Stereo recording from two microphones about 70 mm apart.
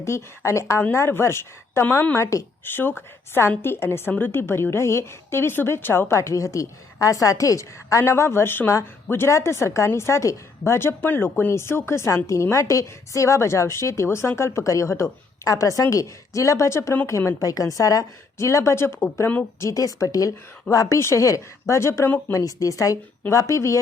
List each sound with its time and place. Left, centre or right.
0.0 s a woman's voice: left
2.1 s a woman's voice: left
17.5 s a woman's voice: left
19.7 s a woman's voice: left
22.3 s a woman's voice: left